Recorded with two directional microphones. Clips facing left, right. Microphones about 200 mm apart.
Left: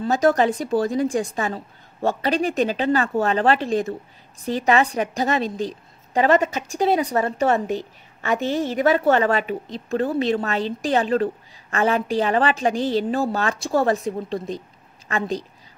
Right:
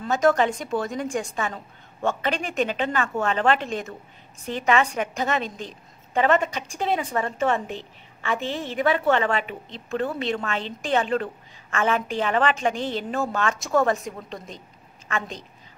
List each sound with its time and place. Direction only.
0.0 s a woman's voice: 35° left (ahead or behind)